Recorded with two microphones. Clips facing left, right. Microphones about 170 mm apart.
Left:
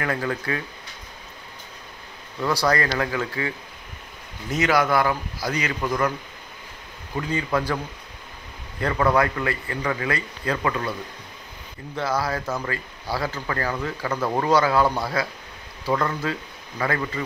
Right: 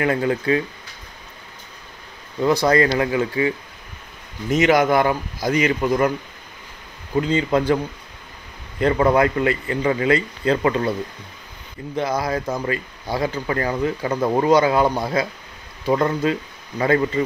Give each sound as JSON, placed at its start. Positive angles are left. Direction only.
{"t": 0.0, "sound": "speech", "side_deg": -20}
{"t": 2.4, "sound": "speech", "side_deg": -20}
{"t": 7.2, "sound": "speech", "side_deg": -20}
{"t": 8.8, "sound": "speech", "side_deg": -25}
{"t": 11.9, "sound": "speech", "side_deg": -20}